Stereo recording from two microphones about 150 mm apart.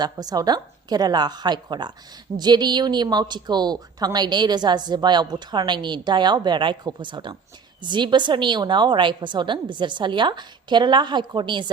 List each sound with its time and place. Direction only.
0.0 s a woman's voice: 25° right (ahead or behind)